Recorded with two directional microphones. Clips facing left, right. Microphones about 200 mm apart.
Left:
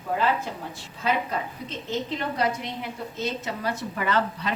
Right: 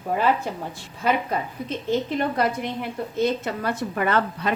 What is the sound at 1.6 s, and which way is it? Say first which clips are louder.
A woman's voice: right 8 dB; 55° right (ahead or behind).